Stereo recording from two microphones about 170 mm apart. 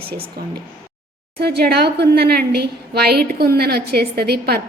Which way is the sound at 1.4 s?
70° right (ahead or behind).